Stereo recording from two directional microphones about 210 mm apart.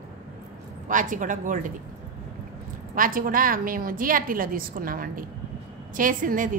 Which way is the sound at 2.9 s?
40° right (ahead or behind).